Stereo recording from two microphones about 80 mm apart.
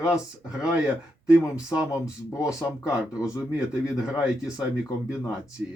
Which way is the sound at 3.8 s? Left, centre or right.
Centre.